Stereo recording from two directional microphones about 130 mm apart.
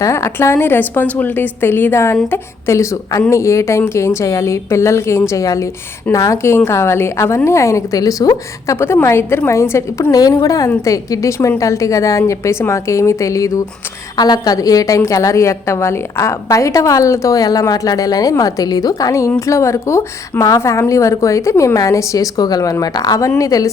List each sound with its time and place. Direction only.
0.0 s a woman's voice: 20° left (ahead or behind)